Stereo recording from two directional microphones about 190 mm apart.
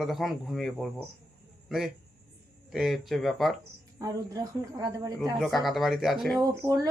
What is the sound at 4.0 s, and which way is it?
Speech, 20° right (ahead or behind).